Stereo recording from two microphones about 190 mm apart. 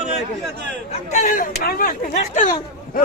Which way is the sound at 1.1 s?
45° left (ahead or behind).